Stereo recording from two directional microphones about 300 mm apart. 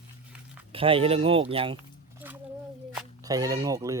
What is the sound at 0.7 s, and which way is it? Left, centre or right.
Speech, centre.